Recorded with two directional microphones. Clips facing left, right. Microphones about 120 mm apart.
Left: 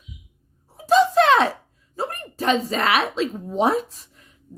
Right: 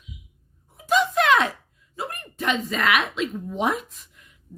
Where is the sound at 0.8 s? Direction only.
35° left (ahead or behind).